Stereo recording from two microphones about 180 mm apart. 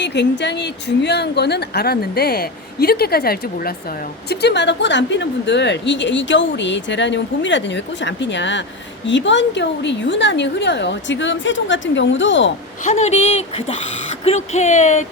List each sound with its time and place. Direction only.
0.0 s speech: 75° left (ahead or behind); by 3.8 s 55° left (ahead or behind)
4.3 s a woman's voice: 65° left (ahead or behind); by 12.5 s 90° left
12.8 s speech: 40° left (ahead or behind)